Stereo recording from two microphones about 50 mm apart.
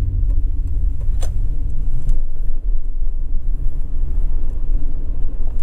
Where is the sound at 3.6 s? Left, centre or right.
Left.